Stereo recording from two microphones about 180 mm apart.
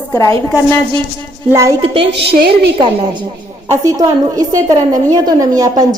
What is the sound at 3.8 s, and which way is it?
A woman's voice, 20° right (ahead or behind).